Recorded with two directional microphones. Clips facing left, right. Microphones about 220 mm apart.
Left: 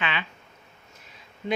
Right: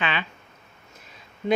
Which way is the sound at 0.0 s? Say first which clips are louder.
Right 3 dB; 40° right (ahead or behind).